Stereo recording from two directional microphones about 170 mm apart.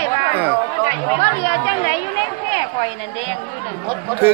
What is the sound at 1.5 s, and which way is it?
Speech, 35° left (ahead or behind).